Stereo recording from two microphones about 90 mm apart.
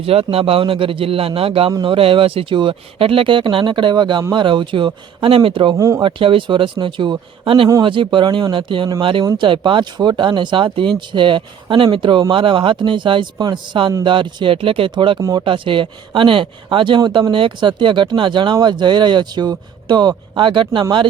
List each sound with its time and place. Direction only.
0.0 s speech: 90° right
1.8 s speech: 80° right
5.2 s speech: 85° right
5.7 s speech: 35° right (ahead or behind)
6.0 s speech: 70° right (ahead or behind)
7.8 s speech: 65° right (ahead or behind)
9.4 s speech: 65° right (ahead or behind)